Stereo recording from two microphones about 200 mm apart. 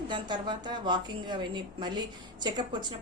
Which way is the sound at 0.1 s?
20° right (ahead or behind).